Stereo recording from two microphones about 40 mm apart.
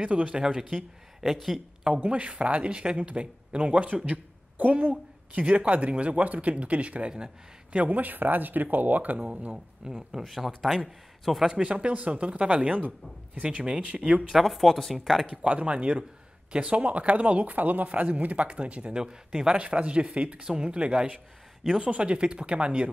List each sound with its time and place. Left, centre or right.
0.0 s speech: right
0.4 s speech: centre
0.7 s speech: centre
2.0 s speech: right
7.7 s speech: right
9.8 s speech: centre
10.2 s speech: centre
11.7 s speech: right
14.3 s speech: centre
15.4 s speech: right